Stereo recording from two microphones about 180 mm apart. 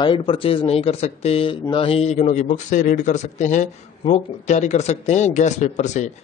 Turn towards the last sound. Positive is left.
turn(degrees=40)  # may be behind; listen again after turning